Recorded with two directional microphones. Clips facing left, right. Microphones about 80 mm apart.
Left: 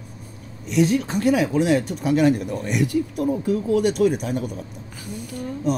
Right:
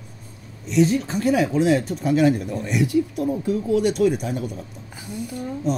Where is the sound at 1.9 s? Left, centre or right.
Left.